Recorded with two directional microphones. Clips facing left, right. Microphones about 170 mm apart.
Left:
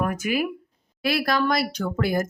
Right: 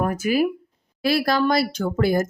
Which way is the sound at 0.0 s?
30° right (ahead or behind).